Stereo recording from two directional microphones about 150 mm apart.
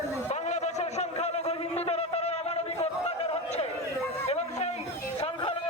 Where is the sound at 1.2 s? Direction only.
40° left (ahead or behind).